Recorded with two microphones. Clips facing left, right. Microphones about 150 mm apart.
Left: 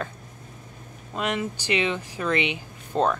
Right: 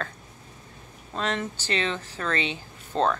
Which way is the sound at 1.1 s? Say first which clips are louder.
Left 2 dB; 10° left (ahead or behind).